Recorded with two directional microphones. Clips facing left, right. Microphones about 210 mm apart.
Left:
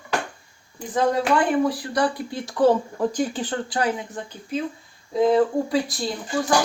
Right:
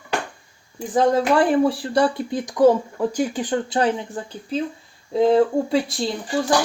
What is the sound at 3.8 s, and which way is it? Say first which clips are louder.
Speech: right 2 dB; 30° right (ahead or behind).